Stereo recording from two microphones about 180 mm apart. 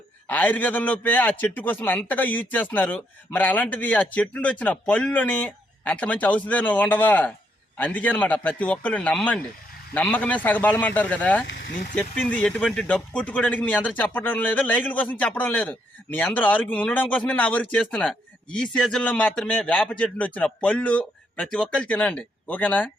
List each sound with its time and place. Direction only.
0.3 s speech: 10° left (ahead or behind)
11.5 s speech: 50° left (ahead or behind)
11.9 s speech: 5° left (ahead or behind)